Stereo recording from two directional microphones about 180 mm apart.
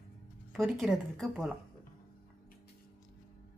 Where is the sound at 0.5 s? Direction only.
Centre (ahead or behind).